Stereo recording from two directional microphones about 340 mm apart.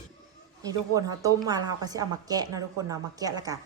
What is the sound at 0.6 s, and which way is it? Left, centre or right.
A woman's voice, centre.